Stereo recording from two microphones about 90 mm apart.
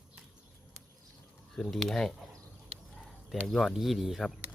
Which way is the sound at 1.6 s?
Centre (ahead or behind).